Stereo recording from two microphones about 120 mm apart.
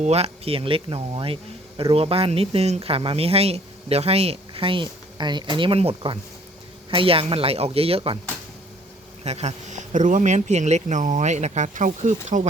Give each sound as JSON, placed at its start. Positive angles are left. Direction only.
{"t": 0.0, "sound": "speech", "side_deg": -60}
{"t": 9.2, "sound": "speech", "side_deg": -65}